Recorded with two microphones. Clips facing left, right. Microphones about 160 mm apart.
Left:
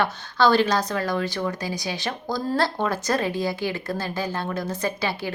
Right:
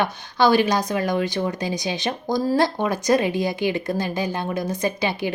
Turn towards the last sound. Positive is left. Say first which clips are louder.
# right 3 dB
turn(degrees=-15)  # may be behind; listen again after turning